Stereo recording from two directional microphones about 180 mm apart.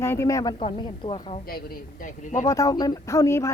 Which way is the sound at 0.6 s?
30° left (ahead or behind).